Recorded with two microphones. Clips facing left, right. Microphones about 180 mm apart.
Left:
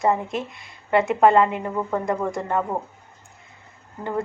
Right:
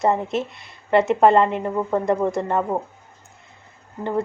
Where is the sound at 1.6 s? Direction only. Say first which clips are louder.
Right 3 dB; 15° right (ahead or behind).